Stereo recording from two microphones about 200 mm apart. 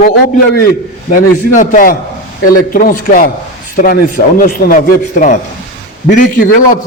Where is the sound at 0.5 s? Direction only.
50° left (ahead or behind).